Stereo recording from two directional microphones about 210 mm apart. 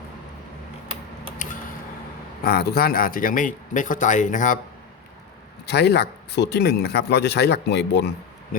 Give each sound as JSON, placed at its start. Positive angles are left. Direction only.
{"t": 2.4, "sound": "speech", "side_deg": 45}
{"t": 5.6, "sound": "speech", "side_deg": 50}